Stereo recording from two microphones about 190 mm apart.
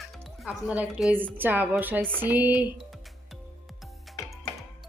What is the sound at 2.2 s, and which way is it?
Music, 10° right (ahead or behind).